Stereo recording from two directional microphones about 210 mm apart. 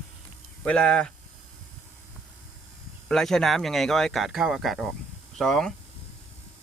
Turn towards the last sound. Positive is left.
turn(degrees=0)  # may be behind; listen again after turning